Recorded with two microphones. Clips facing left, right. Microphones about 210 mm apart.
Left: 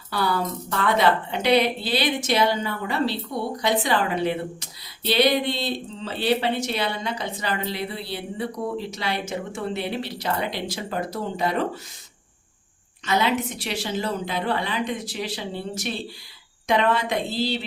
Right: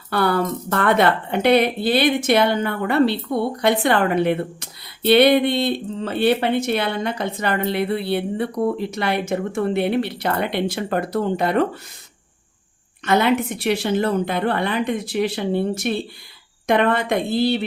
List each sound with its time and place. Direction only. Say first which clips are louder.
0.1 s a woman's voice: right 5 dB; 60° right (ahead or behind)
13.1 s a woman's voice: right 5 dB; 55° right (ahead or behind)